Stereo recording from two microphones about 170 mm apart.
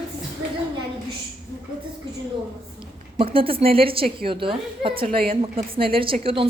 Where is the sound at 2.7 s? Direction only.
30° right (ahead or behind).